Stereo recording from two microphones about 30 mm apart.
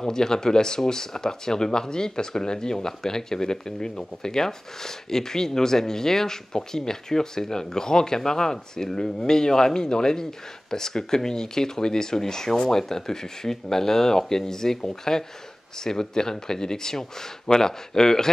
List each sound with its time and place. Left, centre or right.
0.0 s speech: left